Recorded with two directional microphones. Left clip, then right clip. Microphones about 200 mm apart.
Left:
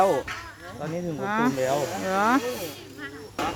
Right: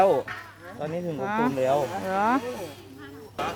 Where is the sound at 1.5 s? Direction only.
35° right (ahead or behind).